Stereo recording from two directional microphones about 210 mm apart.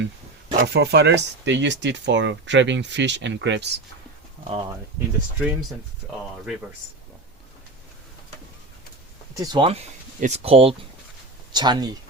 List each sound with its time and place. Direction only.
0.6 s speech: 50° right (ahead or behind)
4.9 s speech: 10° right (ahead or behind)
9.3 s speech: 20° right (ahead or behind)